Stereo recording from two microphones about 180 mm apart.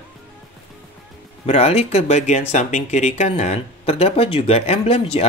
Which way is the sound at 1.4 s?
35° left (ahead or behind).